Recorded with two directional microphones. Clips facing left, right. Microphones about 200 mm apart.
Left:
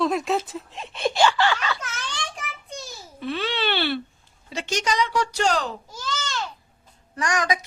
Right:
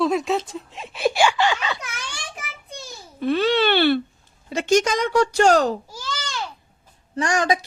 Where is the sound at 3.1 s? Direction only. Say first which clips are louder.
Right 8 dB; 45° right (ahead or behind).